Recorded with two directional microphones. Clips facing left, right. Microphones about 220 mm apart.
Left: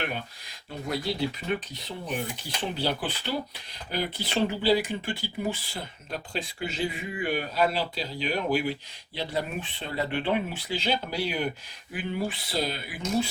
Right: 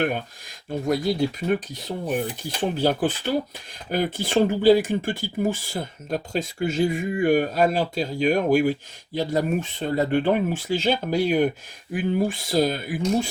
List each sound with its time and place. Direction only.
0.7 s speech: 45° right (ahead or behind)